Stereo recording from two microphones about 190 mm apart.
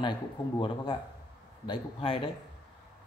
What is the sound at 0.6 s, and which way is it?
Speech, 25° left (ahead or behind).